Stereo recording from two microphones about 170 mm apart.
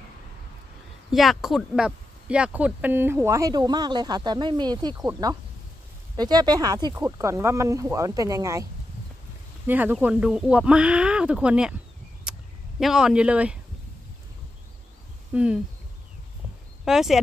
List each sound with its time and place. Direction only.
1.1 s speech: centre (ahead or behind); by 8.6 s 20° right (ahead or behind)
9.7 s speech: 10° right (ahead or behind)
12.3 s a sound: centre (ahead or behind)
15.3 s speech: 5° right (ahead or behind)
16.8 s speech: 5° right (ahead or behind)